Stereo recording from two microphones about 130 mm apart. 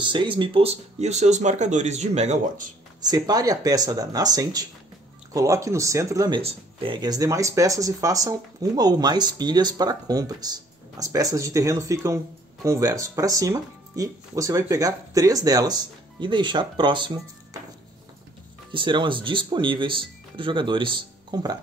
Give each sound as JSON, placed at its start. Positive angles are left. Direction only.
{"t": 0.0, "sound": "speech", "side_deg": -40}
{"t": 3.0, "sound": "speech", "side_deg": -30}
{"t": 6.4, "sound": "speech", "side_deg": -45}
{"t": 7.0, "sound": "speech", "side_deg": -25}
{"t": 18.7, "sound": "speech", "side_deg": -40}